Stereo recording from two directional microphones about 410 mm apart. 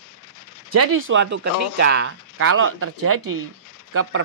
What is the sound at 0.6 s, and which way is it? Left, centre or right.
Speech, right.